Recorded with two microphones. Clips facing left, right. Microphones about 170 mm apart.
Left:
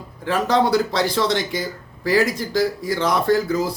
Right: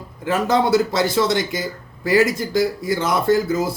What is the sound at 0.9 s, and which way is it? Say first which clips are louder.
Speech: right 2 dB; 5° right (ahead or behind).